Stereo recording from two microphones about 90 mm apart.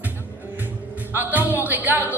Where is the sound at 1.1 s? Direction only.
20° right (ahead or behind).